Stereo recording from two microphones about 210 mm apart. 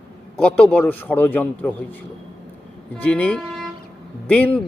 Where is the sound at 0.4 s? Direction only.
5° left (ahead or behind).